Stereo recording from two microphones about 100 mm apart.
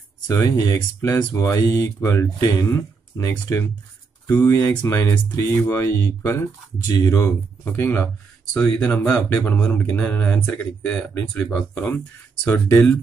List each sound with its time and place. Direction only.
0.3 s speech: 30° left (ahead or behind)
8.5 s speech: 10° left (ahead or behind)